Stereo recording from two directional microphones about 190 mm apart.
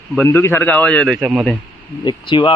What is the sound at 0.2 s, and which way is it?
Speech, 10° left (ahead or behind).